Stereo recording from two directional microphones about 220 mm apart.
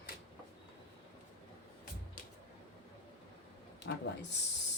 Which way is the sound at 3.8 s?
50° left (ahead or behind).